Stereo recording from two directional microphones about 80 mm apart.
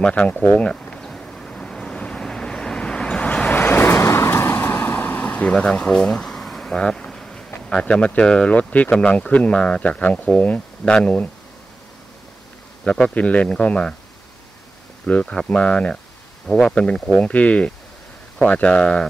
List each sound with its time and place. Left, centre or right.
0.0 s a sound: centre
4.8 s vehicle: left
8.9 s speech: centre
12.8 s a man's voice: centre
13.1 s speech: centre
15.0 s speech: centre